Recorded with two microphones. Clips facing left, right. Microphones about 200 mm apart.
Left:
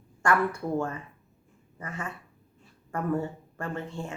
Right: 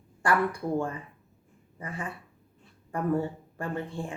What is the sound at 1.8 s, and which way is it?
A woman's voice, 15° right (ahead or behind).